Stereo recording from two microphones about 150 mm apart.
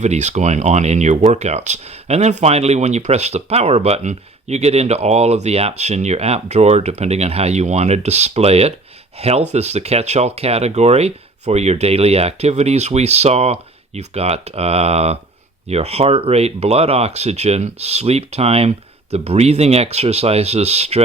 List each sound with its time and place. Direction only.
0.0 s speech: 50° right (ahead or behind)